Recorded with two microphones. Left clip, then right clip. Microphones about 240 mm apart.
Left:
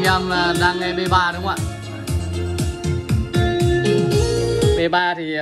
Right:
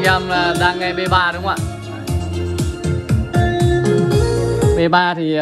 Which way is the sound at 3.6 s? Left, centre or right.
Right.